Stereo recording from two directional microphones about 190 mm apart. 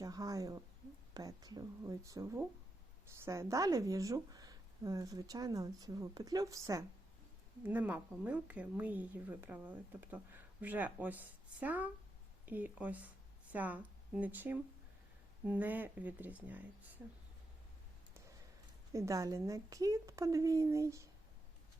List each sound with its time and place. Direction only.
0.0 s a woman's voice: 15° right (ahead or behind)
18.9 s a woman's voice: 15° right (ahead or behind)